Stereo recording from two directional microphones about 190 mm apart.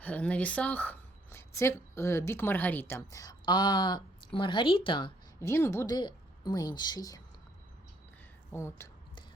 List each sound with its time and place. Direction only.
0.0 s a woman's voice: 5° left (ahead or behind)
8.5 s speech: 15° left (ahead or behind)